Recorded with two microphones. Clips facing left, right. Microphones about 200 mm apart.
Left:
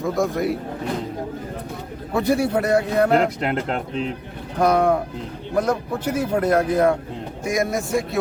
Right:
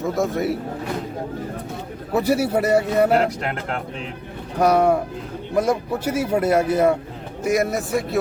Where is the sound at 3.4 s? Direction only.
20° left (ahead or behind).